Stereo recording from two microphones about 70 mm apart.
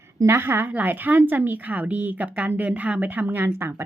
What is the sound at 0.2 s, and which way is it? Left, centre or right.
A woman's voice, right.